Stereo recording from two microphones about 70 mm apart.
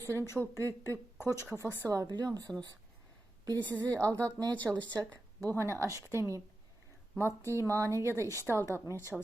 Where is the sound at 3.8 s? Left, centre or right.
Right.